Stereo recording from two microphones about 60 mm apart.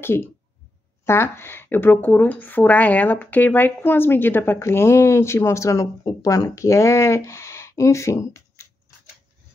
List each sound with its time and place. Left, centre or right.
0.0 s speech: left